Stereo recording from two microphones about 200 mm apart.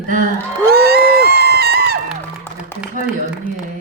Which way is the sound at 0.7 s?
50° right (ahead or behind).